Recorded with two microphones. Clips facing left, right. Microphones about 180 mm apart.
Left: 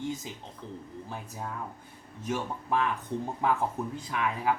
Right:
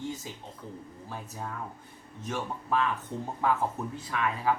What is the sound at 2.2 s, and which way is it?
Speech, 15° left (ahead or behind).